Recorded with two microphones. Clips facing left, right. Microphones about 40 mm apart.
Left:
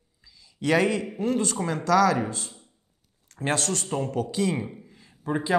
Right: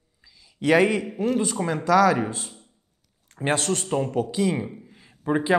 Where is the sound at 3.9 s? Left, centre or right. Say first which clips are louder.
Right 3 dB; centre.